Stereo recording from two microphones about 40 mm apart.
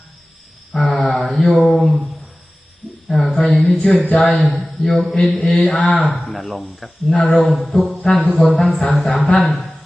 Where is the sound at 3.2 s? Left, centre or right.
Left.